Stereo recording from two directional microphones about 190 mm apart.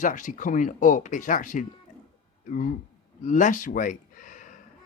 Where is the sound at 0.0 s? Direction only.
45° left (ahead or behind).